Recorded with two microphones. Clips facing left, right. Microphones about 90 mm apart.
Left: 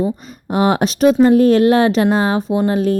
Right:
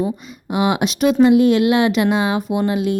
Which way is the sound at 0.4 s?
40° left (ahead or behind).